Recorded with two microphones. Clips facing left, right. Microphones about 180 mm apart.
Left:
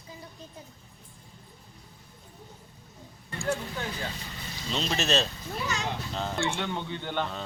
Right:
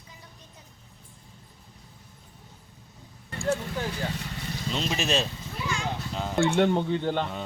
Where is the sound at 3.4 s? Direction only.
25° right (ahead or behind).